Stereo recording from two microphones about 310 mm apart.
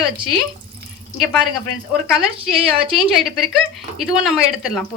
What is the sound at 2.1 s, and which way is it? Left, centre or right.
Speech, centre.